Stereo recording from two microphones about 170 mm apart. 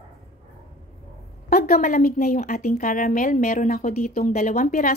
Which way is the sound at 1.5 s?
60° left (ahead or behind).